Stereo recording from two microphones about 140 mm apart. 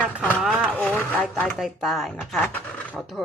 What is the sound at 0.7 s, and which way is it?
Speech, 10° left (ahead or behind).